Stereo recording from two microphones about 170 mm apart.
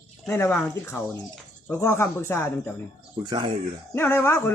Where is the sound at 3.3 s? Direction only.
30° right (ahead or behind).